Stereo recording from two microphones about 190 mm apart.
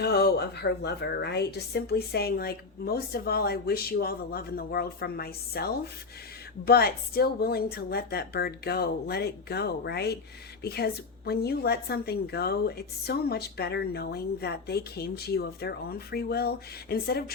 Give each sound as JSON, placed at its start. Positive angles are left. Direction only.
{"t": 0.0, "sound": "a woman's voice", "side_deg": 55}